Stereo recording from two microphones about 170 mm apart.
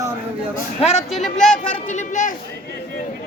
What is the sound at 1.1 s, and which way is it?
Speech, centre (ahead or behind).